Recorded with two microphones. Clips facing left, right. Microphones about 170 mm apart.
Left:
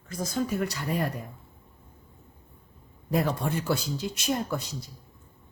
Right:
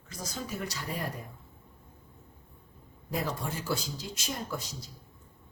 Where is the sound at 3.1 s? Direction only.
60° left (ahead or behind).